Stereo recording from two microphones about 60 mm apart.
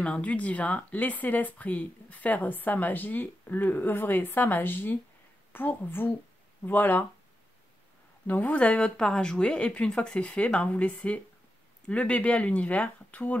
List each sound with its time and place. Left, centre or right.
0.0 s a woman's voice: centre
8.3 s speech: left